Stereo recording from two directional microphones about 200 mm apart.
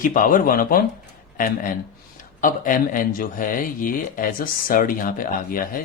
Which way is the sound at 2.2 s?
45° left (ahead or behind).